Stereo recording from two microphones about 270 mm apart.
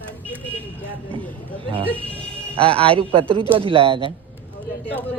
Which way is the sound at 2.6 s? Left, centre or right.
Centre.